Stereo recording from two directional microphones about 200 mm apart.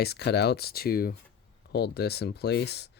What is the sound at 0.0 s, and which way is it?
Speech, 55° left (ahead or behind).